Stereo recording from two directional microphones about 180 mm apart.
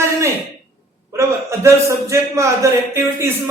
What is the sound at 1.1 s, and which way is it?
A man's voice, 15° right (ahead or behind).